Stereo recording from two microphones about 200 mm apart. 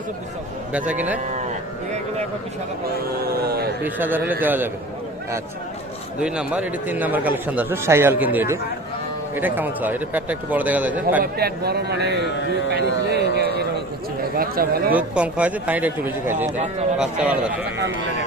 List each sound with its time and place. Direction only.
0.7 s a man's voice: 5° right (ahead or behind)
3.4 s a man's voice: 50° right (ahead or behind)
3.8 s a man's voice: 10° right (ahead or behind)
6.1 s a man's voice: 5° right (ahead or behind)
11.2 s a man's voice: 50° right (ahead or behind)
14.9 s a man's voice: 5° right (ahead or behind)
17.7 s a man's voice: 60° right (ahead or behind)